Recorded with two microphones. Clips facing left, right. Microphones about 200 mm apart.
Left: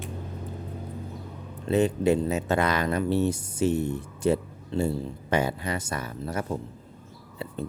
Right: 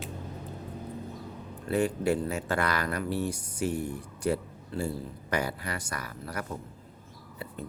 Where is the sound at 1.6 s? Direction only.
20° left (ahead or behind).